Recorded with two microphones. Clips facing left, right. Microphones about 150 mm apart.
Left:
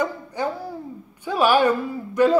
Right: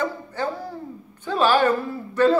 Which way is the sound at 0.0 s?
15° left (ahead or behind).